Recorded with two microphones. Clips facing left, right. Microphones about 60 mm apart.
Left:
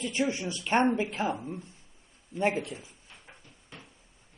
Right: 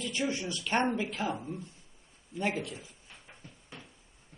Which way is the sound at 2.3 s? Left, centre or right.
Left.